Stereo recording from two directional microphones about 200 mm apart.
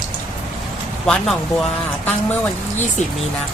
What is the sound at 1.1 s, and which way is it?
Speech, 5° left (ahead or behind).